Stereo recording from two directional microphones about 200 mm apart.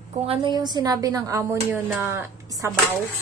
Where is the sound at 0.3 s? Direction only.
25° right (ahead or behind).